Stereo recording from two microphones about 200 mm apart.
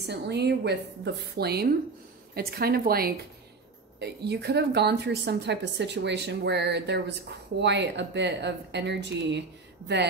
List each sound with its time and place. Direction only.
0.1 s a woman's voice: 55° right (ahead or behind)